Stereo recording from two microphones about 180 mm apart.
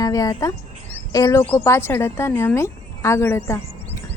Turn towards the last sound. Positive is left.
turn(degrees=15)  # may be behind; listen again after turning